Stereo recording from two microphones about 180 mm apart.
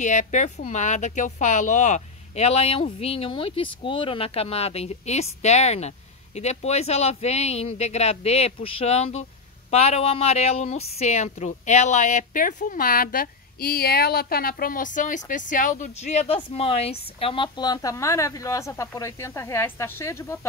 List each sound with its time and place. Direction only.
0.0 s a woman's voice: 40° left (ahead or behind); by 20.3 s 15° left (ahead or behind)